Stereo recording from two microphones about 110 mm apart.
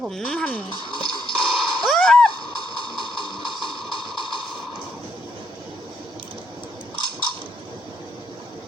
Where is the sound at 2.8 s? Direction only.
45° left (ahead or behind).